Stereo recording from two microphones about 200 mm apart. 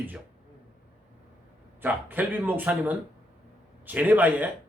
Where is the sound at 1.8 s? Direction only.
10° right (ahead or behind).